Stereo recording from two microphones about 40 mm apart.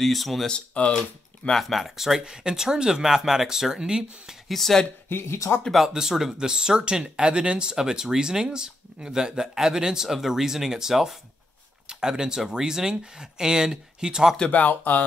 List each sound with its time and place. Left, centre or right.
0.0 s speech: centre
0.5 s speech: left
1.5 s speech: centre
4.5 s speech: centre
5.1 s speech: left
5.9 s speech: centre
14.5 s speech: left